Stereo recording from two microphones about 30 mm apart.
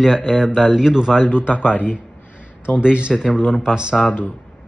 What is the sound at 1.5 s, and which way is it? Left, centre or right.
Speech, left.